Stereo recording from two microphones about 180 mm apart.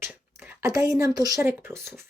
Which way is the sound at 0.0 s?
10° right (ahead or behind).